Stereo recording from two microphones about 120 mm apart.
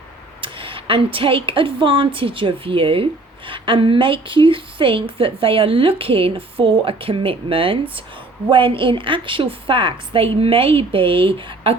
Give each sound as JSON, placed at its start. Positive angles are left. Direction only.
{"t": 0.4, "sound": "a woman's voice", "side_deg": -45}